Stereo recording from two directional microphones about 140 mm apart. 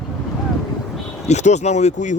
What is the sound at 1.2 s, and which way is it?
Speech, 55° left (ahead or behind).